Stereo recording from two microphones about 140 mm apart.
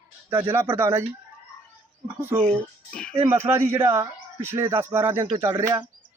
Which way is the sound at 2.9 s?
5° left (ahead or behind).